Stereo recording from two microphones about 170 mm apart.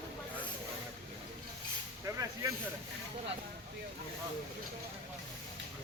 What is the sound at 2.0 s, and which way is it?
Vehicle, 20° right (ahead or behind).